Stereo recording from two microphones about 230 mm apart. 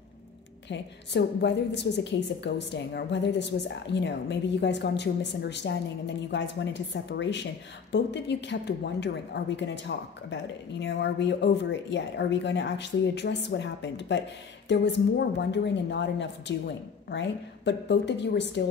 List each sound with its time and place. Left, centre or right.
0.7 s a woman's voice: left